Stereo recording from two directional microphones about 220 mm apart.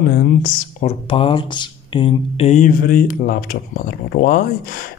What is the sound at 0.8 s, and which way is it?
Speech, 25° left (ahead or behind).